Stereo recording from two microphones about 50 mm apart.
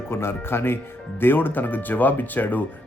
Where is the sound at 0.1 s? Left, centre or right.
Left.